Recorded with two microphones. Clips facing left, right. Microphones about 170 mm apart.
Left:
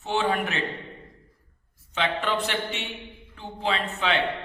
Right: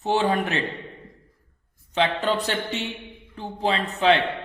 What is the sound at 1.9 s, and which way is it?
A man's voice, 35° right (ahead or behind).